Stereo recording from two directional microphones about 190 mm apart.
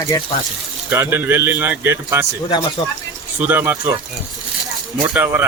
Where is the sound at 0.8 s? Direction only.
15° right (ahead or behind).